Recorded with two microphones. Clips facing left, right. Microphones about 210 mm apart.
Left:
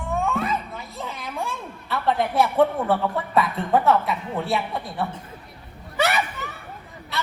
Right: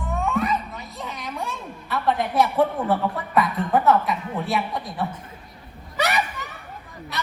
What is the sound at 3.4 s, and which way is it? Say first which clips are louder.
A woman's voice: even; 25° left (ahead or behind).